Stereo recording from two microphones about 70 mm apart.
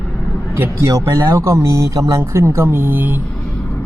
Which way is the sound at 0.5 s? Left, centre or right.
Right.